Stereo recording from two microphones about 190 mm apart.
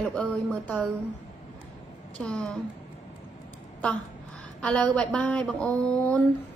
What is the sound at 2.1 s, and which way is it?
Speech, 5° left (ahead or behind).